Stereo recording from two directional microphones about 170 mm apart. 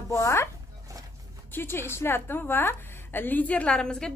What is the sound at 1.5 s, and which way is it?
A woman's voice, 15° left (ahead or behind).